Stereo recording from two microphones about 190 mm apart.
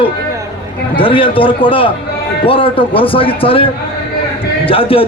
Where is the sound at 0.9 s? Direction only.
25° left (ahead or behind).